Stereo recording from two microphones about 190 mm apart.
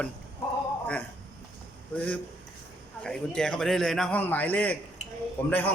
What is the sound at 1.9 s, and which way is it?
A man's voice, 5° left (ahead or behind).